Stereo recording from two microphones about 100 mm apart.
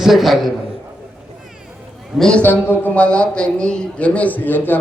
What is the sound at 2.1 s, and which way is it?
Speech, 5° left (ahead or behind).